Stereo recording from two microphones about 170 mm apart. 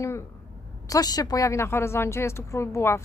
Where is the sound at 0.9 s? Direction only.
20° left (ahead or behind).